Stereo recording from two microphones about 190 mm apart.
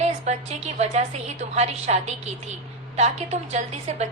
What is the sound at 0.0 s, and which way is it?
A woman's voice, 35° right (ahead or behind).